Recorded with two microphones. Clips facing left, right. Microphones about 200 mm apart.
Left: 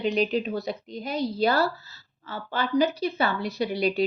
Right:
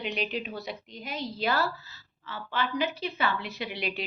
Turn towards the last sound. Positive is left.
turn(degrees=40)  # may be behind; listen again after turning